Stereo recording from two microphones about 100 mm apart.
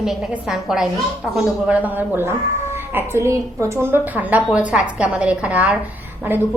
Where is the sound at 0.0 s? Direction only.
5° right (ahead or behind).